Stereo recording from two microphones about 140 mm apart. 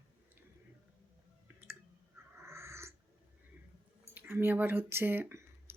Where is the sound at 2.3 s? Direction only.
20° right (ahead or behind).